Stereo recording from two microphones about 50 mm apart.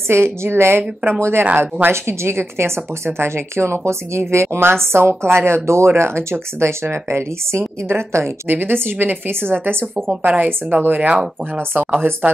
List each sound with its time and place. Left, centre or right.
0.1 s a woman's voice: right
8.5 s a woman's voice: right
10.2 s a woman's voice: right